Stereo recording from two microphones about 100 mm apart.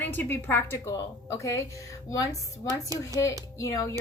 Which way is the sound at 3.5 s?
35° left (ahead or behind).